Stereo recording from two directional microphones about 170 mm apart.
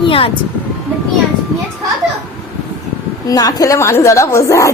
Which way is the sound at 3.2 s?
20° left (ahead or behind).